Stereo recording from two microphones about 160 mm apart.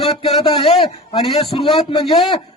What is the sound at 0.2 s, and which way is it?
A man's voice, 35° left (ahead or behind).